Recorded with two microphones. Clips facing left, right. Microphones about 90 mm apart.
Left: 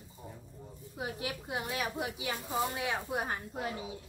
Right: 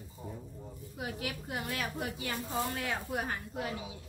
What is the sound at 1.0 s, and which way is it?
A woman's voice, 20° left (ahead or behind).